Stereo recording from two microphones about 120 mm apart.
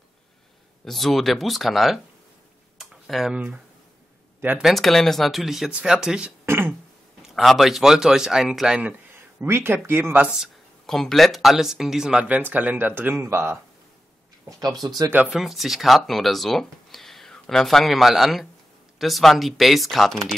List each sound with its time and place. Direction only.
0.8 s speech: centre (ahead or behind); by 4.6 s 15° right (ahead or behind)
4.6 s speech: centre (ahead or behind)
6.4 s speech: 20° right (ahead or behind)
7.2 s speech: centre (ahead or behind)
9.1 s speech: 20° right (ahead or behind)
14.7 s speech: centre (ahead or behind)